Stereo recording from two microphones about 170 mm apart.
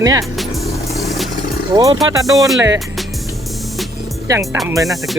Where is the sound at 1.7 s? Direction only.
20° right (ahead or behind).